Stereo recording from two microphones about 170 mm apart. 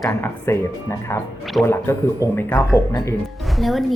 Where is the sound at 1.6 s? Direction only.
15° left (ahead or behind).